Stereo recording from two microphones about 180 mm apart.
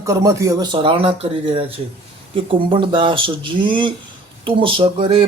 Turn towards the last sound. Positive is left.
turn(degrees=-30)  # may be behind; listen again after turning